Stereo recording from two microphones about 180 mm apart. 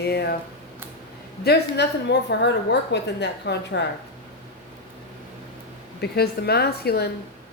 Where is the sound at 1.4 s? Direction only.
65° left (ahead or behind).